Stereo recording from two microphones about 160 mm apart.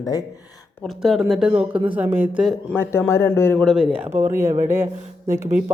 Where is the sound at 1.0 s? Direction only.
Centre (ahead or behind).